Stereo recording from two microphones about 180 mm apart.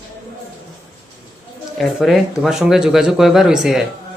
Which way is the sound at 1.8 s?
Centre (ahead or behind).